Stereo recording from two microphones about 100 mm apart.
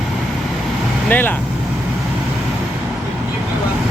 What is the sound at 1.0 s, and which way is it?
Speech, 20° left (ahead or behind).